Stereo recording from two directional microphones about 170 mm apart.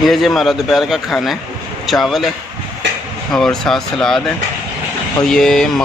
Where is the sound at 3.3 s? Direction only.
Centre (ahead or behind).